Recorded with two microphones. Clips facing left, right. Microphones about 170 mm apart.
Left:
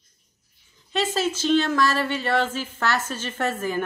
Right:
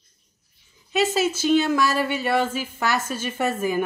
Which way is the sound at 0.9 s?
10° right (ahead or behind).